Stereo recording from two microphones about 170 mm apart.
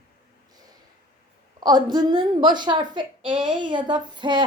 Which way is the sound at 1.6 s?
25° right (ahead or behind).